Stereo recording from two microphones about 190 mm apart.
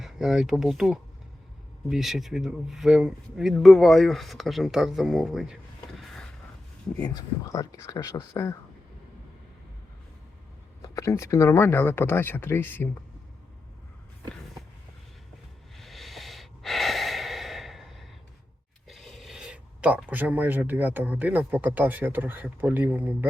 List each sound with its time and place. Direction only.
0.0 s speech: centre (ahead or behind)
7.1 s speech: 20° left (ahead or behind)
10.8 s speech: 15° left (ahead or behind)
15.7 s snort: centre (ahead or behind)
18.9 s speech: centre (ahead or behind)